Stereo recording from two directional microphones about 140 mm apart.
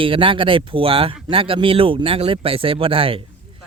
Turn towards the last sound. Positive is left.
turn(degrees=-40)  # may be behind; listen again after turning